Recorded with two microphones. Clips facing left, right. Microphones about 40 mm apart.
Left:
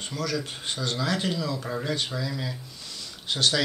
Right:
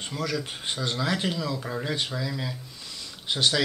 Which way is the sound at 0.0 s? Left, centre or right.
Right.